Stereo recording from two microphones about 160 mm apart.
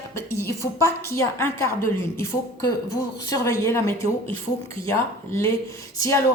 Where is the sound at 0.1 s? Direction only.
15° left (ahead or behind).